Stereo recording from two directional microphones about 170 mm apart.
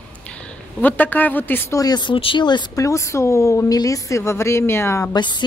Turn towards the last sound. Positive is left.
turn(degrees=20)  # may be behind; listen again after turning